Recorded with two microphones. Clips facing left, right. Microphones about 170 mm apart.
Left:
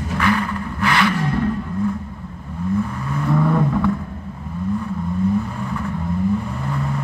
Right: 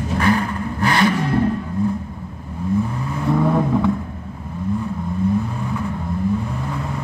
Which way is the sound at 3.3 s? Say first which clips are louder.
Right 1 dB; 15° right (ahead or behind).